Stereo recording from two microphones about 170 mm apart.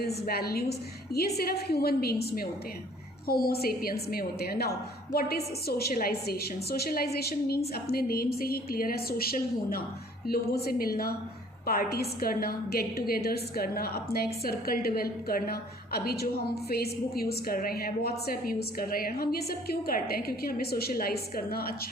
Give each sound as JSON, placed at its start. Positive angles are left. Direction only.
{"t": 0.3, "sound": "a woman's voice", "side_deg": 65}